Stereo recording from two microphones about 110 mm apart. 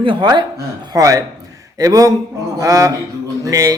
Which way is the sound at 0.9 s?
30° right (ahead or behind).